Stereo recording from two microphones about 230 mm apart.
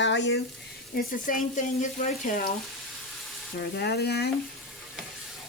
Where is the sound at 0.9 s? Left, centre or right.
Left.